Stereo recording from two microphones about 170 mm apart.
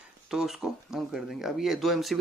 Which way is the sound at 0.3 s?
5° right (ahead or behind).